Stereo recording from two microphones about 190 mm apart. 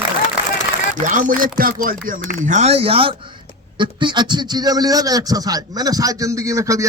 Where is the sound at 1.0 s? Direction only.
45° right (ahead or behind).